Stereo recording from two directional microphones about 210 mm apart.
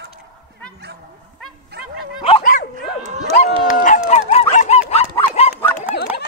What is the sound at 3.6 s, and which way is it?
Dog, 40° left (ahead or behind).